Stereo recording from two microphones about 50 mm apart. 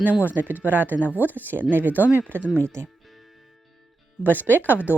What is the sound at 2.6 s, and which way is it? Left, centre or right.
Speech, right.